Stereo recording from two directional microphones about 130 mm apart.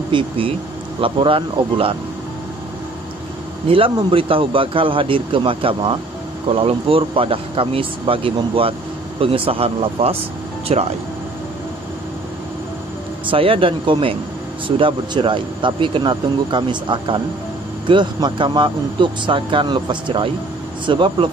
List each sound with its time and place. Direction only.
0.1 s speech: 45° right (ahead or behind)
3.6 s speech: 45° right (ahead or behind)
13.3 s speech: 45° right (ahead or behind)